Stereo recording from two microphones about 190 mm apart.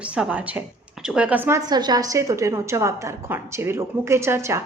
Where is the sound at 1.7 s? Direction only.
20° right (ahead or behind).